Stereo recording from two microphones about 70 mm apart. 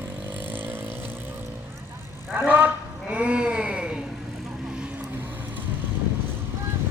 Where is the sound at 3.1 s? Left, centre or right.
Centre.